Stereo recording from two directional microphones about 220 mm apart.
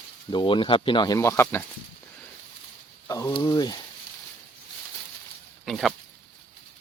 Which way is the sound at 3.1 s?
15° left (ahead or behind).